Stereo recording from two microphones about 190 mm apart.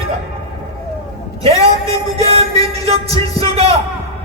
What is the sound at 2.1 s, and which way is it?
Speech, 30° right (ahead or behind).